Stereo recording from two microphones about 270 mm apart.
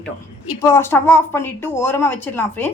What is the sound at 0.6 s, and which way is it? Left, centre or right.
A woman's voice, centre.